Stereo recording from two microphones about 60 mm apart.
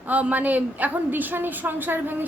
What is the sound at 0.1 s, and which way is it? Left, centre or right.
A woman's voice, right.